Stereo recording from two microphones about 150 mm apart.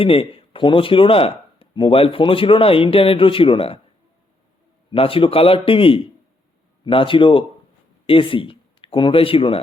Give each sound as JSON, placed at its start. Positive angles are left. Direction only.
{"t": 0.0, "sound": "speech", "side_deg": 40}
{"t": 4.9, "sound": "speech", "side_deg": 35}